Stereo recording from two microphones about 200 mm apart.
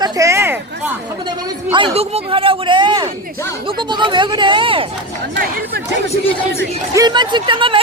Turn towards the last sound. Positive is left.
turn(degrees=-25)  # may be behind; listen again after turning